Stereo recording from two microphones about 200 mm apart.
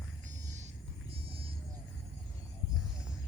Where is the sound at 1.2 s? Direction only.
30° right (ahead or behind).